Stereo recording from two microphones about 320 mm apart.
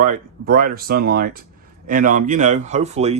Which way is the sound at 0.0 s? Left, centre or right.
Right.